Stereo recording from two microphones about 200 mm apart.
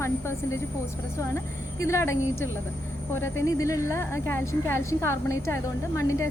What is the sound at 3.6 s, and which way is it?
A woman's voice, 15° left (ahead or behind).